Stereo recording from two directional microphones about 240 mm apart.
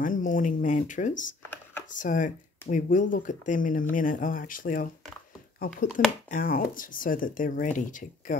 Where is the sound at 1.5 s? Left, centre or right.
Centre.